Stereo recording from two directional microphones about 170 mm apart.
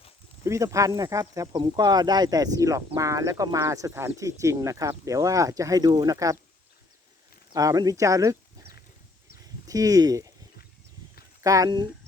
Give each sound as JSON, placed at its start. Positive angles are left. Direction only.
{"t": 0.4, "sound": "speech", "side_deg": -15}
{"t": 7.5, "sound": "speech", "side_deg": -20}
{"t": 9.6, "sound": "speech", "side_deg": -20}
{"t": 11.4, "sound": "speech", "side_deg": -20}